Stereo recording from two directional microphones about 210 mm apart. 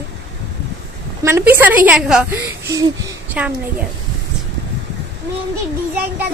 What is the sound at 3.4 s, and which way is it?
Speech, 5° right (ahead or behind).